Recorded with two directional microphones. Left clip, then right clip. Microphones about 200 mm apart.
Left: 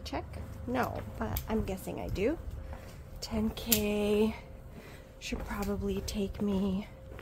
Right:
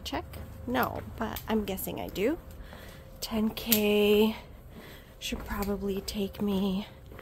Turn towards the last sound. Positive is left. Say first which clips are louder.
# right 2 dB
turn(degrees=-10)  # may be behind; listen again after turning